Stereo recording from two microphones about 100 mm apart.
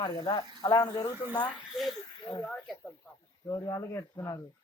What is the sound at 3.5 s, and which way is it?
Speech, 40° left (ahead or behind).